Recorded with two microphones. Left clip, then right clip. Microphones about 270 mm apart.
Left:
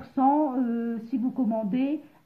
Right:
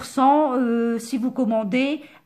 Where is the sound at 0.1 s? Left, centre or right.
Right.